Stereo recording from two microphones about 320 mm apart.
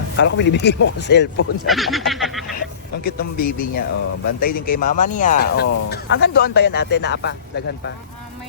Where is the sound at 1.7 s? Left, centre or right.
Centre.